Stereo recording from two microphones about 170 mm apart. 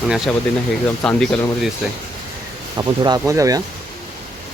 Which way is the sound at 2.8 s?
25° right (ahead or behind).